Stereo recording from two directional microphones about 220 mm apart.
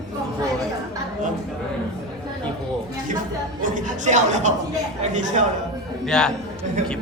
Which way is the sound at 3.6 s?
35° right (ahead or behind).